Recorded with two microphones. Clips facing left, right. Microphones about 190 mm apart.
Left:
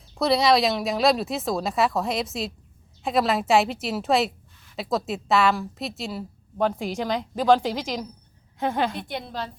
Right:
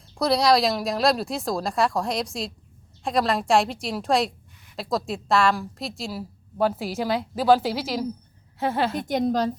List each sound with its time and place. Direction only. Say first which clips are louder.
0.1 s a woman's voice: even; centre (ahead or behind)
9.0 s a woman's voice: right 9 dB; 45° right (ahead or behind)